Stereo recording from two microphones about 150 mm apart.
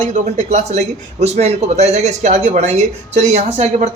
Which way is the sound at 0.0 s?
55° right (ahead or behind).